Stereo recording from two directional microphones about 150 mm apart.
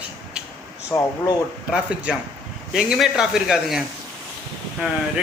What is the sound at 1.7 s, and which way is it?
Speech, 5° right (ahead or behind).